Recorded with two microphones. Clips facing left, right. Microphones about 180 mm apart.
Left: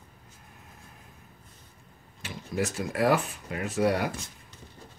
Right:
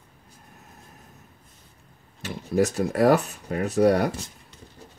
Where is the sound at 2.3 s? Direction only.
40° right (ahead or behind).